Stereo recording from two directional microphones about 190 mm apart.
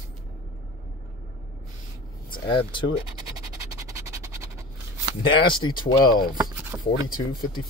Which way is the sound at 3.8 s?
15° right (ahead or behind).